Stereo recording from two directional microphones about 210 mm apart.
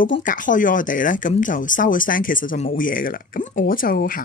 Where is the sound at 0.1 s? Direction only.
40° left (ahead or behind).